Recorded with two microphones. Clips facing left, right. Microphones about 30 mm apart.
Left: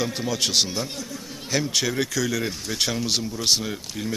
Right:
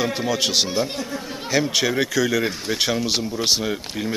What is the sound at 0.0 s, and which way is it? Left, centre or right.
A man's voice, centre.